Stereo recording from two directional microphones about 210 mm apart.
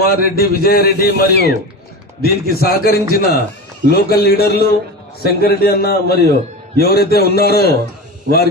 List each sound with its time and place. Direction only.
0.1 s a man's voice: 45° left (ahead or behind)